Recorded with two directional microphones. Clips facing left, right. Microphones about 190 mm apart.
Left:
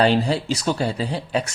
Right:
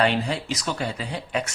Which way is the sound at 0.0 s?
35° left (ahead or behind).